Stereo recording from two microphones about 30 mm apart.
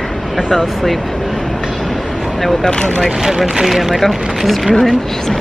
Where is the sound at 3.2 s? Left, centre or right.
Centre.